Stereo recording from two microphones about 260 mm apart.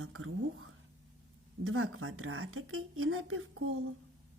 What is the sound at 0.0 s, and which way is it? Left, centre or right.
A woman's voice, right.